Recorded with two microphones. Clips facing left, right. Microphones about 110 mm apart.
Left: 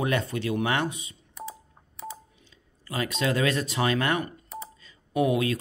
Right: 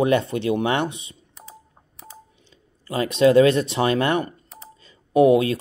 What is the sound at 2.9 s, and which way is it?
Speech, 25° right (ahead or behind).